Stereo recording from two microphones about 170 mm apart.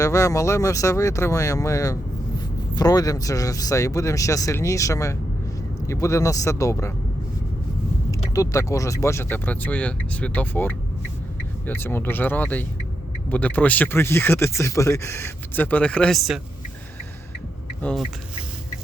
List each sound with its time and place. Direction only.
0.0 s speech: 20° left (ahead or behind)
8.4 s speech: 20° left (ahead or behind); by 16.4 s centre (ahead or behind)